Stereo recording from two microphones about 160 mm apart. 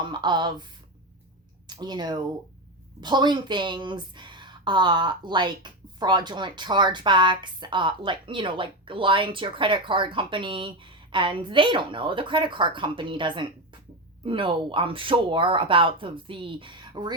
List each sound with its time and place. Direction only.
0.0 s a woman's voice: 30° right (ahead or behind)
1.6 s a woman's voice: 25° right (ahead or behind)